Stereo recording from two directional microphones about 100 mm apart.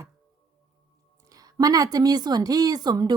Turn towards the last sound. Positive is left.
turn(degrees=-45)  # may be behind; listen again after turning